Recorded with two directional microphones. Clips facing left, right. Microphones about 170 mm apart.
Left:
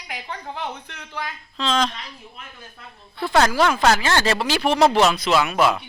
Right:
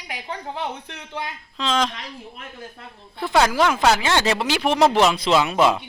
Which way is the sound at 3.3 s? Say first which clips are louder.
Even; 5° right (ahead or behind).